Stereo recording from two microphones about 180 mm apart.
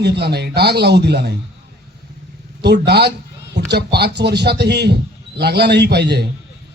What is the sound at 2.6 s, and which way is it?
A man's voice, 65° right (ahead or behind).